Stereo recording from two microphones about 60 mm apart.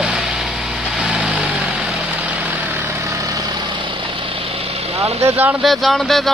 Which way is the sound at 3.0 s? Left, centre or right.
Right.